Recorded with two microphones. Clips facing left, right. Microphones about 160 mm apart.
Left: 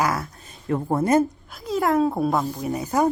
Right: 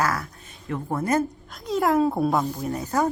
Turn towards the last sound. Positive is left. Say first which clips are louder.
# left 2 dB
turn(degrees=15)  # may be behind; listen again after turning